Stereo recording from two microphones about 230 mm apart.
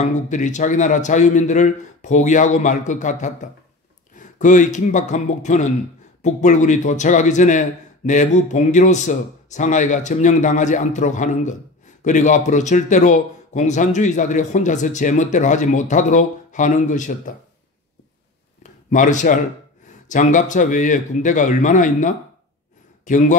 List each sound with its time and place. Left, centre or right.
0.0 s a man's voice: left
18.6 s a sound: left
20.1 s a man's voice: left